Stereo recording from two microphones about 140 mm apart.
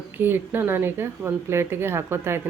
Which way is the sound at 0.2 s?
15° right (ahead or behind).